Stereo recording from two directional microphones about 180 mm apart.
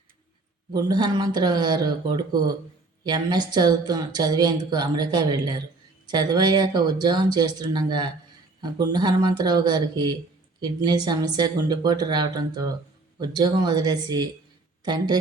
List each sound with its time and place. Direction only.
0.7 s a woman's voice: 20° right (ahead or behind)